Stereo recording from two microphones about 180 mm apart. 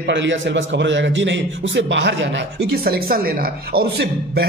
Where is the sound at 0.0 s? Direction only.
90° right.